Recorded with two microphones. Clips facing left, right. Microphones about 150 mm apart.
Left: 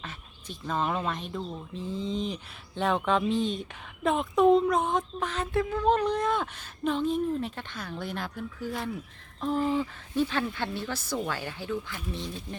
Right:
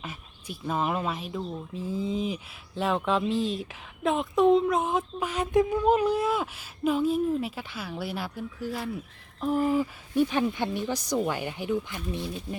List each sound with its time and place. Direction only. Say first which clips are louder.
0.0 s speech: right 2 dB; 10° right (ahead or behind)